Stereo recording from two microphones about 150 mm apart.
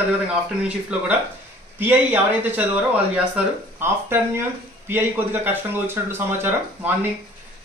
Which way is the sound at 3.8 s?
15° right (ahead or behind).